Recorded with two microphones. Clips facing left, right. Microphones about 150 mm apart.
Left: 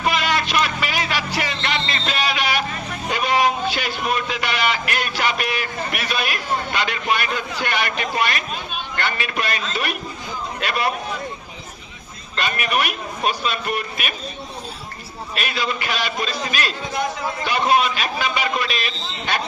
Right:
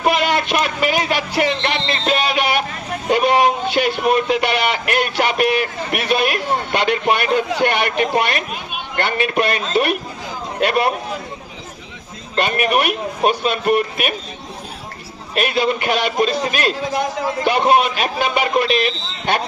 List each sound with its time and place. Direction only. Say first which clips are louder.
0.0 s a sound: right 4 dB; 55° right (ahead or behind)
1.7 s music: right 5 dB; 50° right (ahead or behind)
3.1 s vehicle: right 5 dB; 55° right (ahead or behind)
3.7 s a sound: right 7 dB; 60° right (ahead or behind)
9.0 s a man's voice: right 7 dB; 55° right (ahead or behind)
12.4 s speech: right 5 dB; 55° right (ahead or behind)
15.4 s a man's voice: right 8 dB; 55° right (ahead or behind)